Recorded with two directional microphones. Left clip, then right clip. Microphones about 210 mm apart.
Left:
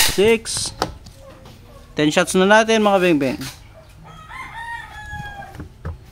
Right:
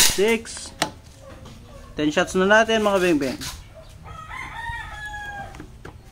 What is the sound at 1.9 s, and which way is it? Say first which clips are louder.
Speech: left 4 dB; 55° left (ahead or behind).